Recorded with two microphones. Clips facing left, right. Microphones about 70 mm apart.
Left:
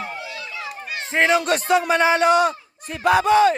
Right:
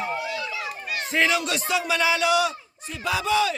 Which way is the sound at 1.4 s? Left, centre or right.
Left.